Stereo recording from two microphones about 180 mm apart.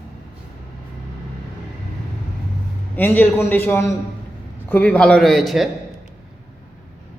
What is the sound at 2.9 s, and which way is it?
A man's voice, 10° left (ahead or behind).